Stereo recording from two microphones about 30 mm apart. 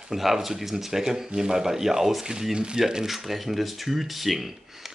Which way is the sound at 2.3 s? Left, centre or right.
Right.